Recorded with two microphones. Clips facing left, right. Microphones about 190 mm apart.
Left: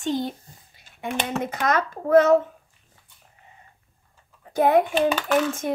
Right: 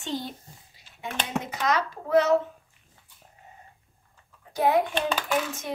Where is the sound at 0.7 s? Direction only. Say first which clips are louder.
Left 5 dB; 55° left (ahead or behind).